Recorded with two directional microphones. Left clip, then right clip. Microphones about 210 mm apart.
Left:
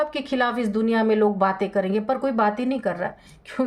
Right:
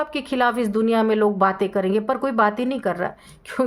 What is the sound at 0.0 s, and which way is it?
Speech, 20° right (ahead or behind).